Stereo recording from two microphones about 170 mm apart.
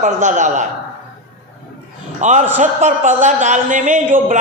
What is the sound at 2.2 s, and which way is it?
A man's voice, 45° right (ahead or behind).